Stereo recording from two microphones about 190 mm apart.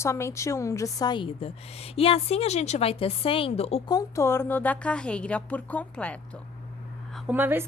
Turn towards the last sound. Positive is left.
turn(degrees=-10)  # may be behind; listen again after turning